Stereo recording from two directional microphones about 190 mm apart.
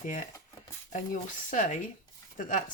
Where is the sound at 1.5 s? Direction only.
40° left (ahead or behind).